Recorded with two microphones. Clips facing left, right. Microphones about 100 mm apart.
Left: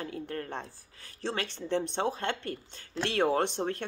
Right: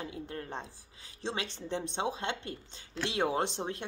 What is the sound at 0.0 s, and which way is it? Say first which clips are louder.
Speech: left 3 dB; 20° right (ahead or behind).